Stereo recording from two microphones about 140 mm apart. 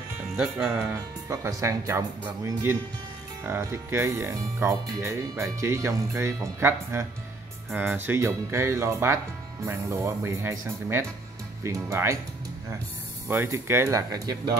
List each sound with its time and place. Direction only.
0.4 s speech: 5° right (ahead or behind)
1.3 s speech: 20° right (ahead or behind)
3.4 s speech: 15° right (ahead or behind)
13.3 s speech: 15° right (ahead or behind)